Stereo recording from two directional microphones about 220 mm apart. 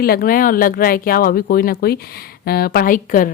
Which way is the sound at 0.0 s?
45° left (ahead or behind).